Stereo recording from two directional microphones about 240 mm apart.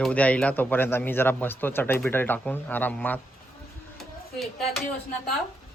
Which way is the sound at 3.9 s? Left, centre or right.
Centre.